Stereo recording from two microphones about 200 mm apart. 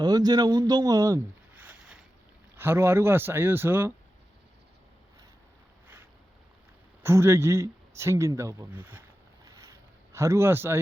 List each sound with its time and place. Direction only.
0.0 s a sound: 20° right (ahead or behind)
2.6 s speech: 10° right (ahead or behind)
7.0 s speech: 15° right (ahead or behind)
10.1 s speech: 15° right (ahead or behind)